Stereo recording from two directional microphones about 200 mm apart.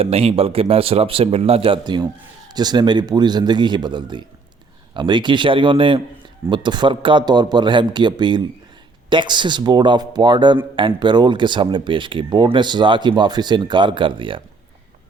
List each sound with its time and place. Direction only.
0.0 s speech: 30° right (ahead or behind)